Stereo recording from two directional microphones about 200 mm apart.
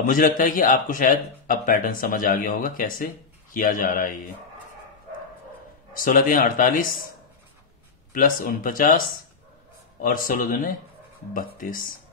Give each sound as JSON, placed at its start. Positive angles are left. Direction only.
{"t": 0.0, "sound": "a man's voice", "side_deg": 45}
{"t": 5.9, "sound": "a man's voice", "side_deg": 45}
{"t": 8.1, "sound": "a man's voice", "side_deg": 45}